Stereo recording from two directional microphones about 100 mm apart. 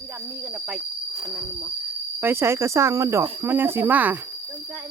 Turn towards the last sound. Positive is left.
turn(degrees=-20)  # may be behind; listen again after turning